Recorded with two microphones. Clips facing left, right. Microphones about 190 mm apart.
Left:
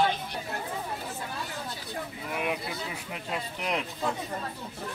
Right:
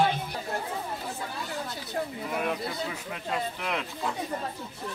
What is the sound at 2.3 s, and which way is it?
Speech, 5° left (ahead or behind).